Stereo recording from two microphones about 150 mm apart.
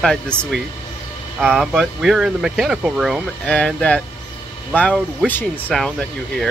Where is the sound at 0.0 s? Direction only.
5° left (ahead or behind).